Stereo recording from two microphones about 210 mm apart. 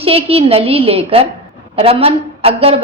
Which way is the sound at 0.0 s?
30° right (ahead or behind).